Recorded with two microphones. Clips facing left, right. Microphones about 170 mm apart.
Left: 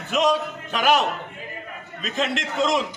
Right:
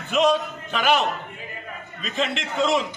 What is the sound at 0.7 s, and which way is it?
Speech, 5° left (ahead or behind).